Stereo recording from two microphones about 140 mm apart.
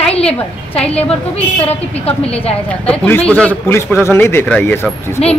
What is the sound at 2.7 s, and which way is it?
A man's voice, 10° left (ahead or behind).